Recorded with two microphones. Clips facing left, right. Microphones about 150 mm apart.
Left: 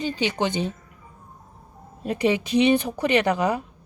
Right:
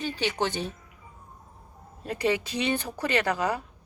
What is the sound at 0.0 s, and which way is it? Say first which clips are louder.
Speech: left 4 dB; 15° left (ahead or behind).